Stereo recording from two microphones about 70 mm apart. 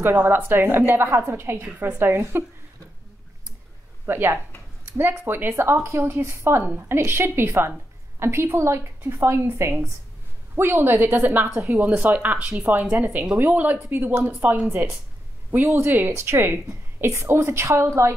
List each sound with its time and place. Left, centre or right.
0.1 s a woman's voice: right
4.0 s a woman's voice: right
6.6 s speech: right
7.0 s a woman's voice: right
11.5 s a woman's voice: right
11.8 s a woman's voice: right